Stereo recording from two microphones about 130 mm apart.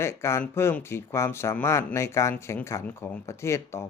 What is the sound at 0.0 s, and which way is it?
Speech, 20° left (ahead or behind).